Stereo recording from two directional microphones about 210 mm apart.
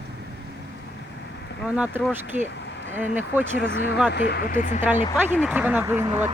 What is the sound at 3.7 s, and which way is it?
Speech, 55° left (ahead or behind).